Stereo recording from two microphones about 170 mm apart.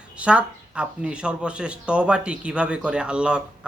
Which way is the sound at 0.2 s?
5° right (ahead or behind).